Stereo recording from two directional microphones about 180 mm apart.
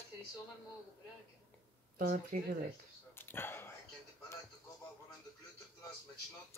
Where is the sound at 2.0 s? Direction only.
50° right (ahead or behind).